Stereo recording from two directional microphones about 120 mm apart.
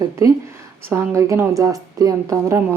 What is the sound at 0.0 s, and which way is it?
A woman's voice, 30° right (ahead or behind).